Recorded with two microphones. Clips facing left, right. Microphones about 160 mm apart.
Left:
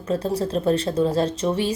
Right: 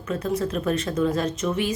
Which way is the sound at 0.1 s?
30° left (ahead or behind).